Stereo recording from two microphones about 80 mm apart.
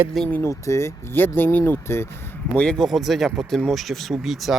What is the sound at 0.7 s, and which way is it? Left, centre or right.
Speech, left.